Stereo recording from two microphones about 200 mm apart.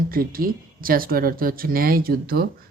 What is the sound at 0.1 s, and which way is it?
Speech, 45° right (ahead or behind).